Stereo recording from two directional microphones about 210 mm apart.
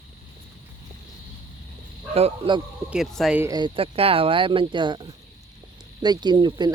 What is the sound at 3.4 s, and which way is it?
Speech, 20° right (ahead or behind).